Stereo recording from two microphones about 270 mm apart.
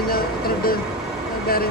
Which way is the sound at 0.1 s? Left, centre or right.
Left.